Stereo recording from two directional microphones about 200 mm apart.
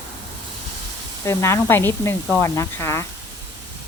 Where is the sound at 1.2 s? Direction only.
15° left (ahead or behind).